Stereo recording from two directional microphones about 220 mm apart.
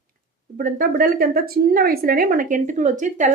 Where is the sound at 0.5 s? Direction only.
40° right (ahead or behind).